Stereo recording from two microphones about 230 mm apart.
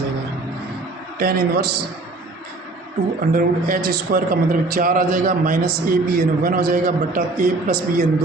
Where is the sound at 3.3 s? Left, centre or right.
Right.